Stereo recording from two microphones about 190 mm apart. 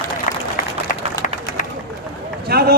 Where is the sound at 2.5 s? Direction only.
55° right (ahead or behind).